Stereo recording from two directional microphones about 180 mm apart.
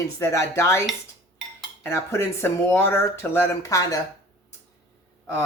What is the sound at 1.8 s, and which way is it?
Speech, 15° left (ahead or behind).